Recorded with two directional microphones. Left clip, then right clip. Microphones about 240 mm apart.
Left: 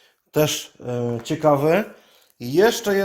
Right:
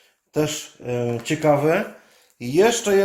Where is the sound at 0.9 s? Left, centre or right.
Left.